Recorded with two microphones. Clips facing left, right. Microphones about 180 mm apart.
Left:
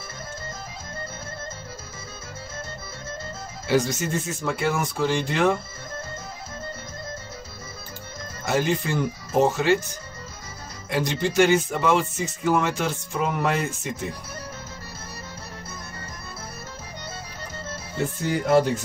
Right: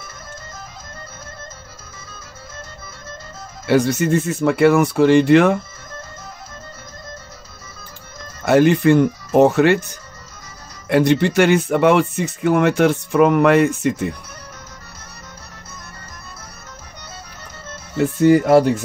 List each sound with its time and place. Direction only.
3.6 s speech: 60° right (ahead or behind)
8.5 s speech: 65° right (ahead or behind)
18.2 s speech: 65° right (ahead or behind)